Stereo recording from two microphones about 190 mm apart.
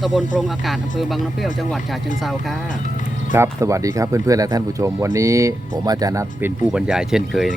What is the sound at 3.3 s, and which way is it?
Speech, 15° right (ahead or behind).